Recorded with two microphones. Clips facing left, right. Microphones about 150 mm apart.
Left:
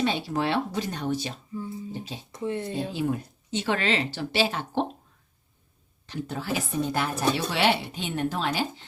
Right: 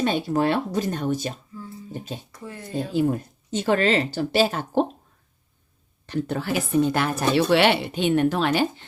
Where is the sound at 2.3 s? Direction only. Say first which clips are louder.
Left 8 dB; 25° left (ahead or behind).